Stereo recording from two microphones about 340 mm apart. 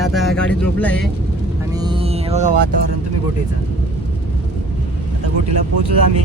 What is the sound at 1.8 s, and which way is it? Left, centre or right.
Music, centre.